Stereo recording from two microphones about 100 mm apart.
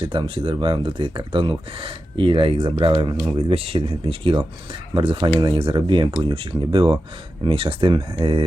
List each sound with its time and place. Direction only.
0.0 s speech: 55° right (ahead or behind)
3.3 s speech: 70° right (ahead or behind)
4.9 s speech: 50° right (ahead or behind)
7.4 s speech: 60° right (ahead or behind)